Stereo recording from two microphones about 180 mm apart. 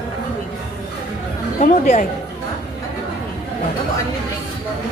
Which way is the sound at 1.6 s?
50° left (ahead or behind).